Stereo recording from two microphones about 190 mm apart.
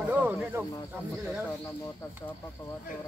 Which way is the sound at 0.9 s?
10° right (ahead or behind).